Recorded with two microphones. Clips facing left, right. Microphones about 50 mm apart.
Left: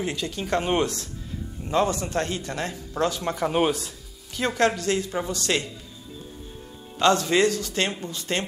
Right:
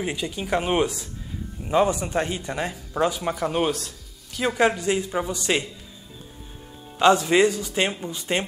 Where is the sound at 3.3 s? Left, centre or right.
Centre.